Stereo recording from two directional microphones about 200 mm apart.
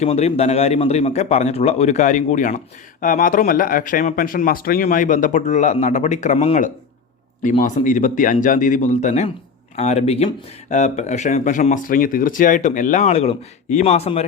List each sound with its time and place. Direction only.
0.0 s speech: 30° left (ahead or behind)